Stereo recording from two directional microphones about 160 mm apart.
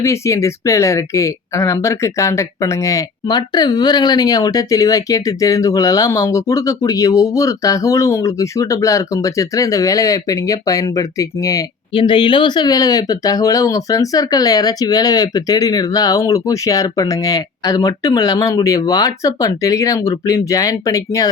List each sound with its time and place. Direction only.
0.0 s speech: 20° left (ahead or behind)